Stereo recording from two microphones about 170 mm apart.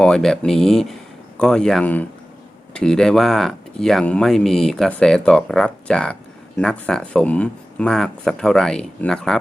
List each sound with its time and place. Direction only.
0.0 s speech: 5° left (ahead or behind)